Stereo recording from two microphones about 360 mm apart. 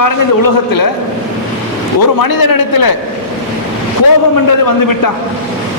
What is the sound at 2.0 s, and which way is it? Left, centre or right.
Speech, left.